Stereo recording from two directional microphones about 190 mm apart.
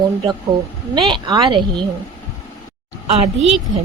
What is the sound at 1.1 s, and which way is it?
Speech, 25° right (ahead or behind).